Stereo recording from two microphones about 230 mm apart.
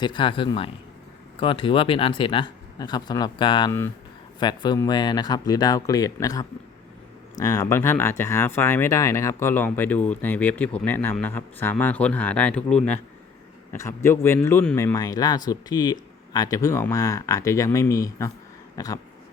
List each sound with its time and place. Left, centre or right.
0.0 s speech: left